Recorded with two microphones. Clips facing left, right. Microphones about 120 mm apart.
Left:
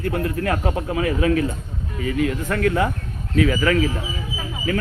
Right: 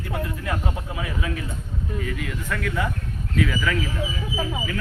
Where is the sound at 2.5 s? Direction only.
50° left (ahead or behind).